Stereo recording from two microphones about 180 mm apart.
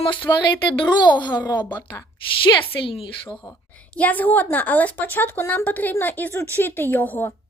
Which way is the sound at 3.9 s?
10° left (ahead or behind).